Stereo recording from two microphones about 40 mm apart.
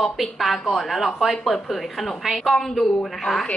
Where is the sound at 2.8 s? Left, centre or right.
Centre.